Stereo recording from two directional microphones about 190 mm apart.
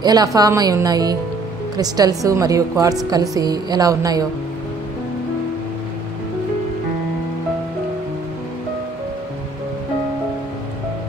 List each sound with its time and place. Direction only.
0.0 s a woman's voice: 20° right (ahead or behind)